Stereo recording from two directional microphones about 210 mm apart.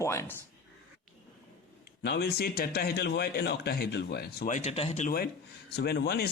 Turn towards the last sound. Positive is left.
turn(degrees=50)  # may be behind; listen again after turning